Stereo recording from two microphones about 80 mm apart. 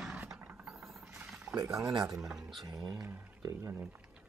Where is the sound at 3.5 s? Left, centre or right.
Right.